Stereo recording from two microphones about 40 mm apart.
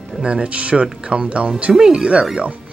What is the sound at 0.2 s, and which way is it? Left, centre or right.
Mantra, right.